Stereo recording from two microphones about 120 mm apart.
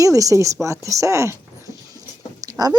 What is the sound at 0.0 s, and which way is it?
Speech, 30° right (ahead or behind).